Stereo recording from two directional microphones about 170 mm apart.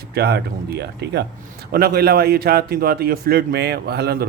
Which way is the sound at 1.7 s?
65° right (ahead or behind).